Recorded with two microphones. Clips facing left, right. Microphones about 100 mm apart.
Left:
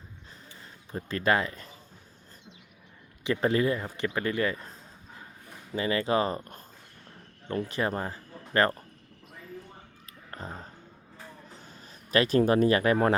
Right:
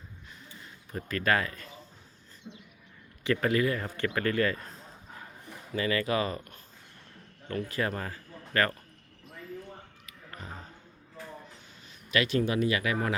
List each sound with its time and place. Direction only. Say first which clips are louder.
0.6 s speech: left 2 dB; 30° left (ahead or behind)
3.2 s speech: left 1 dB; 25° left (ahead or behind)
3.8 s speech: even; 15° left (ahead or behind)
5.7 s a man's voice: left 2 dB; 25° left (ahead or behind)
10.1 s a sound: left 5 dB; 35° left (ahead or behind)
11.6 s speech: left 4 dB; 40° left (ahead or behind)